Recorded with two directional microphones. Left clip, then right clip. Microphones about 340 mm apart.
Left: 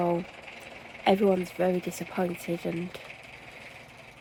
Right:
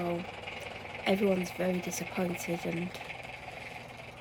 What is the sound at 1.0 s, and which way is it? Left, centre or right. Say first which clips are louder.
Speech: left 6 dB; centre.